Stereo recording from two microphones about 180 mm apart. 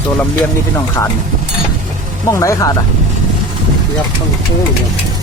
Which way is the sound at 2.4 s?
20° left (ahead or behind).